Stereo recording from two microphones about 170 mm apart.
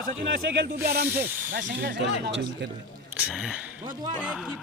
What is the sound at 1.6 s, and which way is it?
Speech, 55° right (ahead or behind).